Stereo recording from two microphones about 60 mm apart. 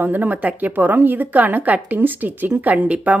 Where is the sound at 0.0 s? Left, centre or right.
Right.